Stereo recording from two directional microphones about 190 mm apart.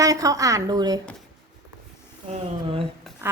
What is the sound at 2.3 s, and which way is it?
Speech, 30° right (ahead or behind).